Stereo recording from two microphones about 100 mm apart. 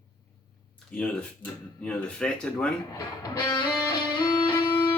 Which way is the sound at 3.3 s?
50° left (ahead or behind).